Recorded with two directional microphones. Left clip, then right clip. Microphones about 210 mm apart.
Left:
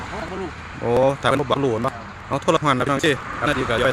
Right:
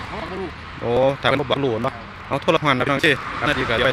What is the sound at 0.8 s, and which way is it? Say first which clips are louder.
Speech: even; 10° left (ahead or behind).